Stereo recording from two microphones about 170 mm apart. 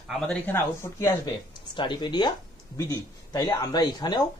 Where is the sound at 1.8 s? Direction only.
25° left (ahead or behind).